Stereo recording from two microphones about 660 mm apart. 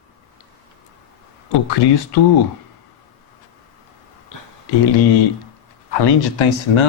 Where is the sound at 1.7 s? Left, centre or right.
Left.